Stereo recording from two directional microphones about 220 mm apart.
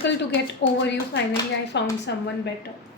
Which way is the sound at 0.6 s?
55° left (ahead or behind).